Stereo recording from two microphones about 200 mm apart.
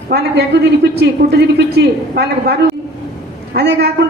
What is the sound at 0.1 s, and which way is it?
A woman's voice, 55° right (ahead or behind).